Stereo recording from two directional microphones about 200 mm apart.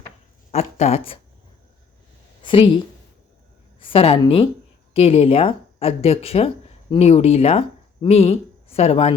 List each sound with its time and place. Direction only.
0.5 s speech: 35° left (ahead or behind)
2.4 s a woman's voice: 25° left (ahead or behind)